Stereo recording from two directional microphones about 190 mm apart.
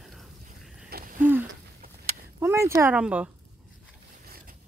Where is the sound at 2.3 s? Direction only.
15° right (ahead or behind).